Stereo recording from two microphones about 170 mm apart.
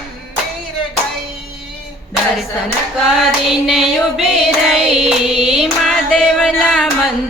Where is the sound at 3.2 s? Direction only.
Centre (ahead or behind).